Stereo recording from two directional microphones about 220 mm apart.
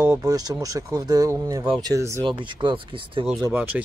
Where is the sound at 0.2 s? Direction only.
15° right (ahead or behind).